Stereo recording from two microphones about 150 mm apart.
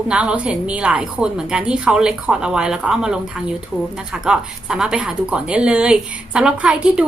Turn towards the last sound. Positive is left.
turn(degrees=-5)  # may be behind; listen again after turning